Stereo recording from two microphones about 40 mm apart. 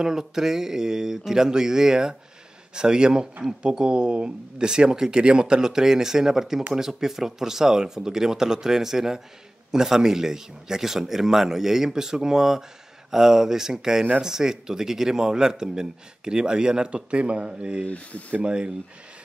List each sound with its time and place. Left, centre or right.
0.0 s speech: centre
4.6 s speech: centre
17.8 s speech: left
18.4 s speech: right